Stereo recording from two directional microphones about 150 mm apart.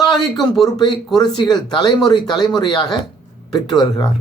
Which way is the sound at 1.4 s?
25° left (ahead or behind).